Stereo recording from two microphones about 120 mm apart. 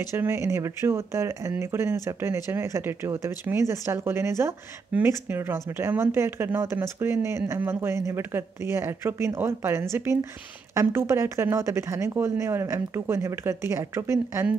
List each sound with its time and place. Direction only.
0.1 s speech: 20° right (ahead or behind)